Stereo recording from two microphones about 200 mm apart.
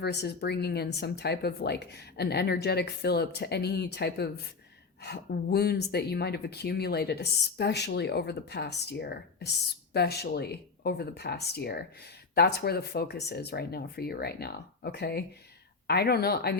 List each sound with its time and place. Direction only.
0.0 s speech: 55° left (ahead or behind)